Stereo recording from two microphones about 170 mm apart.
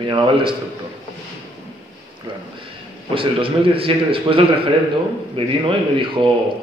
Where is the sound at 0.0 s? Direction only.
30° right (ahead or behind).